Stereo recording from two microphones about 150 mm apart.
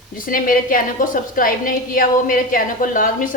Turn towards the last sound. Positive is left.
turn(degrees=65)  # may be behind; listen again after turning